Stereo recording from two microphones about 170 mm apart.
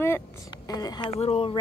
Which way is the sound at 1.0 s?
35° left (ahead or behind).